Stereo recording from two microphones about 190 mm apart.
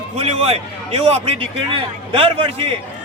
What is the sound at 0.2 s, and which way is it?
A man's voice, 30° right (ahead or behind).